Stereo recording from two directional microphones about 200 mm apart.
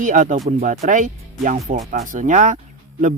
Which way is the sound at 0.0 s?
40° right (ahead or behind).